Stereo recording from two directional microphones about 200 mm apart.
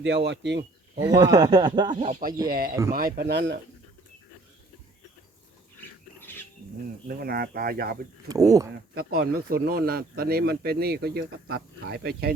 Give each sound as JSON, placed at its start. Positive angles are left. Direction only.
{"t": 0.3, "sound": "speech", "side_deg": -60}
{"t": 0.9, "sound": "speech", "side_deg": -15}
{"t": 2.5, "sound": "speech", "side_deg": -50}
{"t": 6.1, "sound": "a sound", "side_deg": 10}
{"t": 7.1, "sound": "speech", "side_deg": -50}
{"t": 8.3, "sound": "speech", "side_deg": -15}
{"t": 9.0, "sound": "speech", "side_deg": -50}